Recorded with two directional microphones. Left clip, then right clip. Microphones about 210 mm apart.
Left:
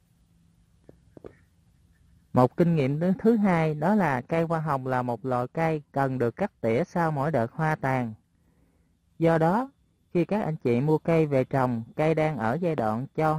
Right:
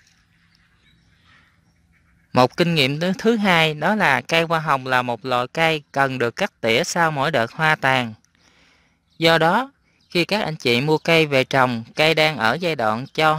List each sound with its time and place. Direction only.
2.5 s speech: 5° right (ahead or behind)
9.2 s speech: 5° right (ahead or behind)